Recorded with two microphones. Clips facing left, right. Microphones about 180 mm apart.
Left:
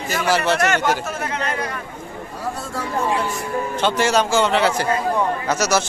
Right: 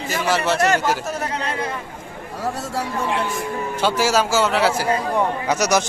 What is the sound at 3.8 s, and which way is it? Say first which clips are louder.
A man's voice: even; 5° right (ahead or behind).